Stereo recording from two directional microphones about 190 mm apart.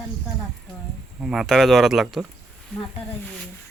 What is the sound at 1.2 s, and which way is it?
Speech, centre (ahead or behind).